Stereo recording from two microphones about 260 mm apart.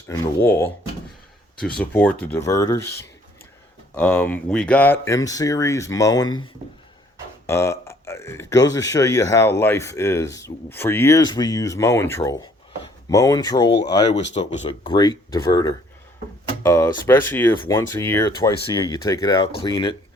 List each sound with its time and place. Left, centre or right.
0.1 s a man's voice: centre